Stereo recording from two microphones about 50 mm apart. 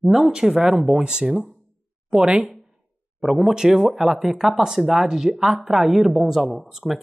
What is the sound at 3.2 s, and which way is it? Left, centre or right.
A woman's voice, centre.